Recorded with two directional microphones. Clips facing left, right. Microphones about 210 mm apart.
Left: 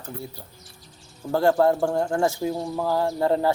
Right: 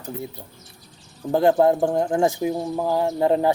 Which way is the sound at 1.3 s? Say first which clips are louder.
Right 2 dB; 20° right (ahead or behind).